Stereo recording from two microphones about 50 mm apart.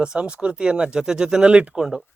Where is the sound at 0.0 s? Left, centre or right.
Centre.